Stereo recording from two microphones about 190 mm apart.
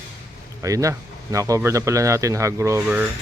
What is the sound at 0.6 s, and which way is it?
Speech, 15° right (ahead or behind).